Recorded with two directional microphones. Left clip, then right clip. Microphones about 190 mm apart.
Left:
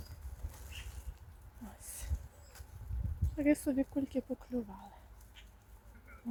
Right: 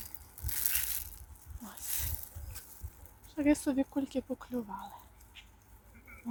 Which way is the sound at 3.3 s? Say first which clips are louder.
Right 2 dB; 5° left (ahead or behind).